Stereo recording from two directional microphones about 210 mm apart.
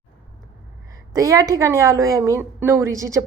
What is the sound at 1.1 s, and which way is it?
A woman's voice, 15° right (ahead or behind).